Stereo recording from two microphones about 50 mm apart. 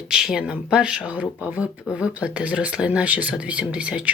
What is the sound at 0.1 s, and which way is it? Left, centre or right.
Speech, centre.